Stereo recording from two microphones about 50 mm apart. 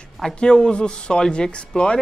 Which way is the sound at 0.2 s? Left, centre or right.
Centre.